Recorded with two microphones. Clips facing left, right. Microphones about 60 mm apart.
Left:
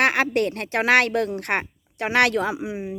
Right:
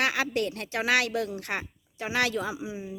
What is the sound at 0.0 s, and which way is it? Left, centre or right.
A woman's voice, left.